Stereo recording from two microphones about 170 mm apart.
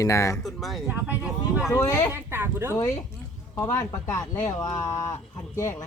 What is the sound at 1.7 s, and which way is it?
Speech, 15° left (ahead or behind).